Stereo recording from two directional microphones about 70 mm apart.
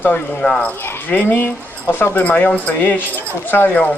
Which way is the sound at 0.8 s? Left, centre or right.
Left.